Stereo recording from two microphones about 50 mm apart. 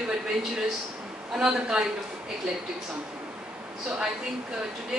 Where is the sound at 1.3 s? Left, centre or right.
Centre.